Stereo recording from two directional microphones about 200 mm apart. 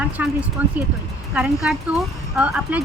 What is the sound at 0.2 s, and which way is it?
Speech, 10° right (ahead or behind).